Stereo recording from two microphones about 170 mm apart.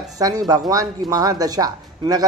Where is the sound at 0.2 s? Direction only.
20° right (ahead or behind).